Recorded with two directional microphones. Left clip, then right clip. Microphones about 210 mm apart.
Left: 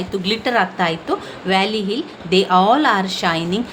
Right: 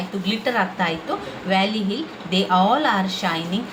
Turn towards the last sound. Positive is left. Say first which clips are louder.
# left 4 dB
turn(degrees=50)  # may be behind; listen again after turning